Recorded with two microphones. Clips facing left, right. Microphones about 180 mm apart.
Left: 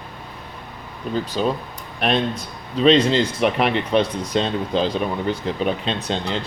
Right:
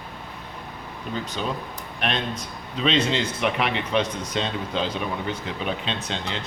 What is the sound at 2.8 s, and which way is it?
Speech, 35° left (ahead or behind).